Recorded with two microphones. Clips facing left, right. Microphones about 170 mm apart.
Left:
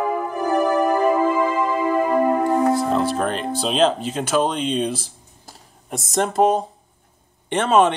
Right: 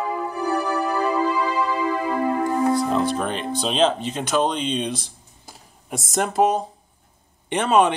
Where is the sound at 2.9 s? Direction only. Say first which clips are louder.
Left 2 dB; centre (ahead or behind).